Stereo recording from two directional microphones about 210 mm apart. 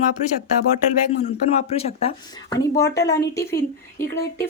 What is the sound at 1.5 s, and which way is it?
Speech, 30° left (ahead or behind).